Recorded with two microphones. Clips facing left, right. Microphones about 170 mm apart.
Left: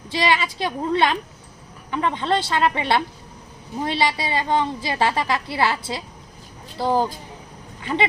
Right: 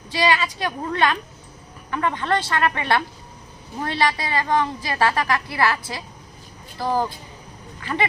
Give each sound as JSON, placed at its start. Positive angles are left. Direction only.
{"t": 0.1, "sound": "a woman's voice", "side_deg": 25}